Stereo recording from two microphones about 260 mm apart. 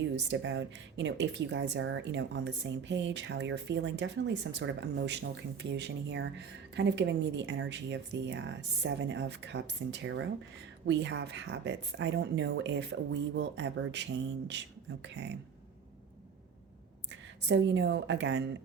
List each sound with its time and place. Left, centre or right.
0.3 s speech: right
17.1 s speech: right